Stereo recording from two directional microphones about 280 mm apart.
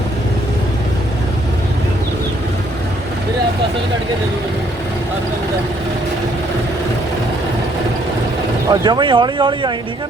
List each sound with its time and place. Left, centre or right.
8.7 s speech: centre